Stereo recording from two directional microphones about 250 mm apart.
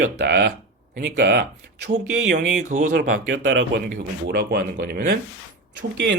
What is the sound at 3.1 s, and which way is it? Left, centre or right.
Speech, right.